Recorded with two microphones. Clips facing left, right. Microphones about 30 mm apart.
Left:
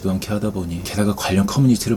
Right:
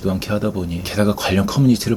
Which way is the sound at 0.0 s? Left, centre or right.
Centre.